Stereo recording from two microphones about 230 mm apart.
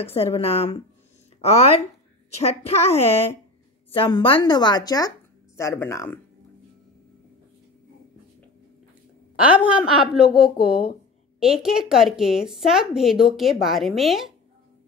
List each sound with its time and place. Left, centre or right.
0.0 s a woman's voice: left
9.8 s a woman's voice: centre